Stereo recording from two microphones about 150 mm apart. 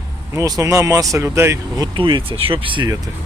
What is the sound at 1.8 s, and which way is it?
Speech, 30° right (ahead or behind).